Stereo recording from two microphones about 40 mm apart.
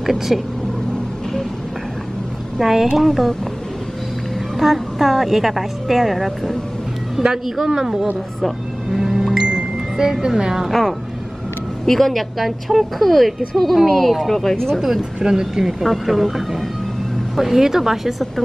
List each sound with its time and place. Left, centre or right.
0.0 s speech: centre
2.6 s a woman's voice: centre
4.6 s a woman's voice: centre
7.4 s speech: centre
8.4 s music: centre
9.9 s speech: centre
10.7 s a woman's voice: centre
14.8 s speech: centre
15.6 s a woman's voice: centre